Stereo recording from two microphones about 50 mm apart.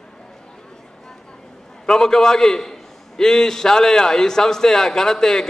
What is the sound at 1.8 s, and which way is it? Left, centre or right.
A man's voice, centre.